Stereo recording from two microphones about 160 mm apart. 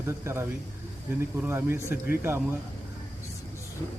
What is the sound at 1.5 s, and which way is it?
Speech, 15° right (ahead or behind).